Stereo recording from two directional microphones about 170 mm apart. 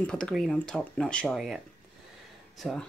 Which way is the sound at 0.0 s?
5° left (ahead or behind).